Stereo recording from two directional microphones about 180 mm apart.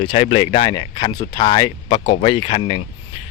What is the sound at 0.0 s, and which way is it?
Speech, 35° left (ahead or behind).